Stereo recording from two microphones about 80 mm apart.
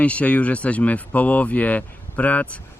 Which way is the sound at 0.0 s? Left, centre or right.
Centre.